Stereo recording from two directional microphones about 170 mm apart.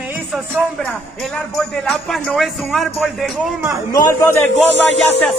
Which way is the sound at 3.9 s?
20° left (ahead or behind).